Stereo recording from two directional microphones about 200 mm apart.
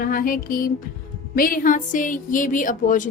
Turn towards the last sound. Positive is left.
turn(degrees=40)  # may be behind; listen again after turning